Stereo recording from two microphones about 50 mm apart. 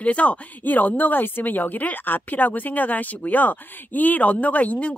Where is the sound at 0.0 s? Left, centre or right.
Left.